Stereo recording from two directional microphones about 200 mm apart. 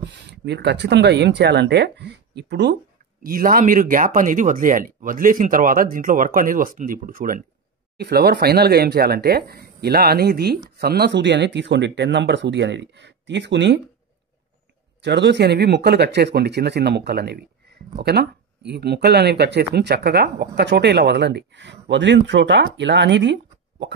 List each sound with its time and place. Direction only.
0.0 s speech: 55° right (ahead or behind)
3.3 s speech: 45° right (ahead or behind); by 13.7 s 65° right (ahead or behind)
15.0 s speech: 60° right (ahead or behind)